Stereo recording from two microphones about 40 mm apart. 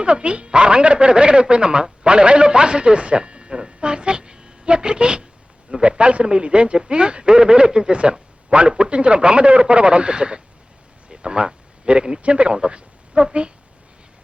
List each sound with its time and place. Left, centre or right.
0.0 s a man's voice: right